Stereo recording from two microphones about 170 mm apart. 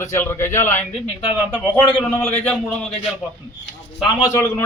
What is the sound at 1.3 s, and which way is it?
Speech, 5° right (ahead or behind).